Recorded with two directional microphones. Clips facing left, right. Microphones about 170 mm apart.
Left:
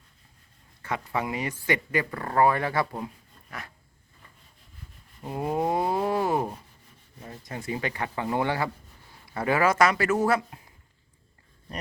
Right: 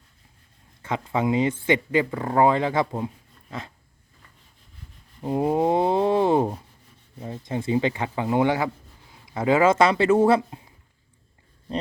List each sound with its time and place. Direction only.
0.9 s speech: 20° right (ahead or behind)
5.2 s speech: 25° right (ahead or behind)